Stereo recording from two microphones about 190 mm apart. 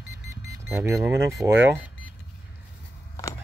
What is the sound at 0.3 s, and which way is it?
Vehicle, 15° right (ahead or behind).